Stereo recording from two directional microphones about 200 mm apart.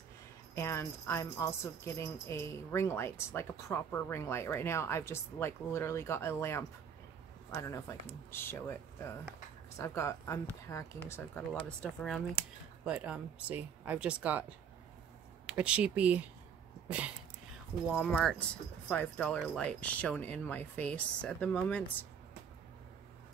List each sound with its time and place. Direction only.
0.6 s speech: 15° left (ahead or behind)
12.8 s speech: 5° right (ahead or behind)
15.4 s speech: 5° right (ahead or behind)
17.9 s speech: centre (ahead or behind)